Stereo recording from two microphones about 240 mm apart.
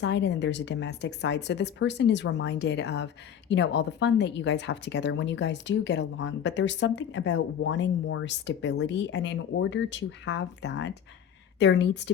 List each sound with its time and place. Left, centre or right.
0.0 s a woman's voice: left